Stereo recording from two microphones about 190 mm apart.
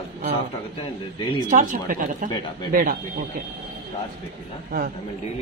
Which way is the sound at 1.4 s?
45° right (ahead or behind).